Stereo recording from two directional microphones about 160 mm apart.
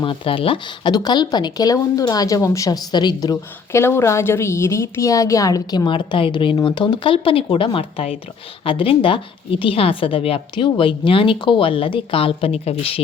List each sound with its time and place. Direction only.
0.0 s a woman's voice: 35° left (ahead or behind)